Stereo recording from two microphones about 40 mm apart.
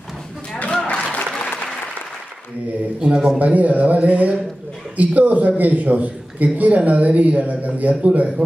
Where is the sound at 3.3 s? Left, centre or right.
Right.